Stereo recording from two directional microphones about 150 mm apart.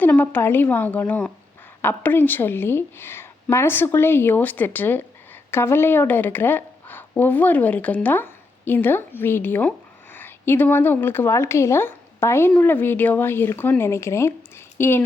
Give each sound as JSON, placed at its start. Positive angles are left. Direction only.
{"t": 0.0, "sound": "a woman's voice", "side_deg": 10}